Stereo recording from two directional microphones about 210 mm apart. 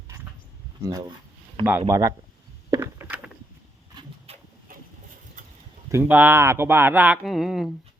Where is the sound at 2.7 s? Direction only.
10° right (ahead or behind).